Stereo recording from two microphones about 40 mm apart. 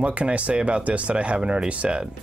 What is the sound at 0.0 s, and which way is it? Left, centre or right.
Speech, right.